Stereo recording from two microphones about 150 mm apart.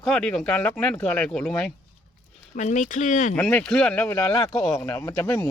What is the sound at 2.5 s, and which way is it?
Speech, 55° left (ahead or behind).